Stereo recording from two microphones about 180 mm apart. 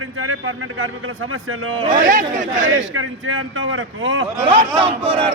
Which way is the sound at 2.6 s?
90° right.